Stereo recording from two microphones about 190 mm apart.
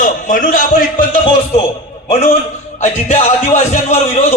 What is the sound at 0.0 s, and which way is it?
A man's voice, 45° left (ahead or behind).